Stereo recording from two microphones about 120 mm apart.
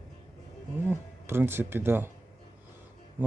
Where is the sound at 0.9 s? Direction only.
20° right (ahead or behind).